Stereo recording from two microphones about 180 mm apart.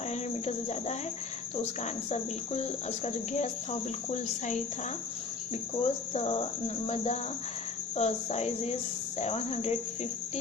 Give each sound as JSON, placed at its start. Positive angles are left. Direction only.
{"t": 0.1, "sound": "cricket", "side_deg": 40}
{"t": 5.8, "sound": "cricket", "side_deg": 35}